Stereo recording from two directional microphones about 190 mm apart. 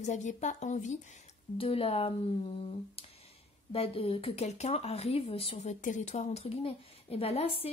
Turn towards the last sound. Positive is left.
turn(degrees=30)  # may be behind; listen again after turning